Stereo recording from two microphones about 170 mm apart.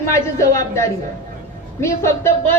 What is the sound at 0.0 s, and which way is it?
Speech, 15° left (ahead or behind).